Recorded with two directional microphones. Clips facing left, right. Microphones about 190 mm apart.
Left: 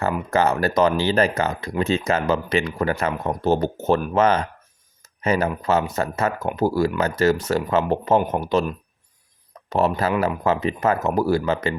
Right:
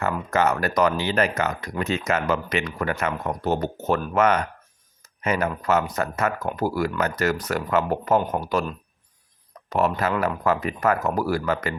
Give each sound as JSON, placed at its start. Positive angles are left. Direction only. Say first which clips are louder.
{"t": 0.3, "sound": "speech", "louder": "left 2 dB", "side_deg": 30}
{"t": 9.6, "sound": "speech", "louder": "left 2 dB", "side_deg": 30}